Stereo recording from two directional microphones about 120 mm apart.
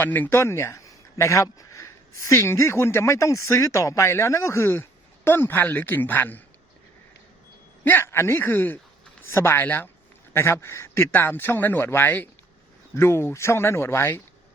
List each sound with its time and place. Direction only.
0.0 s a man's voice: 15° left (ahead or behind)
7.9 s a man's voice: 20° left (ahead or behind)